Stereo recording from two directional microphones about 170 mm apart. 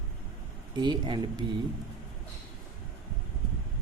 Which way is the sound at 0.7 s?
25° right (ahead or behind).